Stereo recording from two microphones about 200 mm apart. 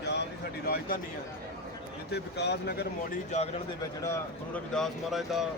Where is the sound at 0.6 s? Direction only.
50° left (ahead or behind).